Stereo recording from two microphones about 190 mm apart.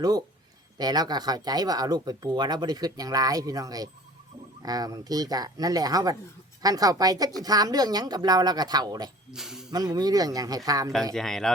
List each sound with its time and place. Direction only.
0.8 s speech: 20° right (ahead or behind)
9.3 s speech: 5° right (ahead or behind)
9.7 s speech: 20° right (ahead or behind)
11.1 s speech: centre (ahead or behind)